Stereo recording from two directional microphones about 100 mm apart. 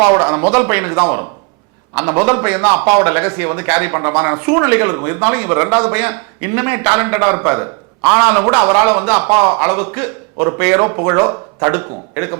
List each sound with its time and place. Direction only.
0.0 s a man's voice: 10° right (ahead or behind)